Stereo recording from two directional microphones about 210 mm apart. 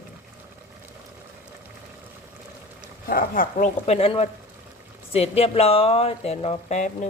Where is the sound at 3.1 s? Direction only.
40° left (ahead or behind).